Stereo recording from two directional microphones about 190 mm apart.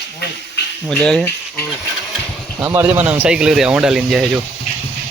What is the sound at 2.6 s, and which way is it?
Speech, 10° right (ahead or behind).